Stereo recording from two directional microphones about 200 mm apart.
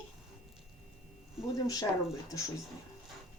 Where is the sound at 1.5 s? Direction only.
20° left (ahead or behind).